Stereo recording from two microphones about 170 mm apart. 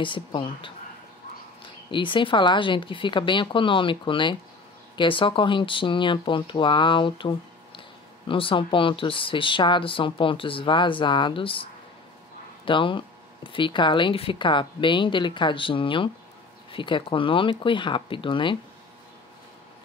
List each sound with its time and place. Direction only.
0.0 s speech: 30° left (ahead or behind)
12.6 s speech: 30° left (ahead or behind)